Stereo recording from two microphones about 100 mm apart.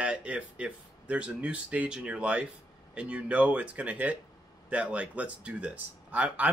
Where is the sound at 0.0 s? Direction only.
10° right (ahead or behind).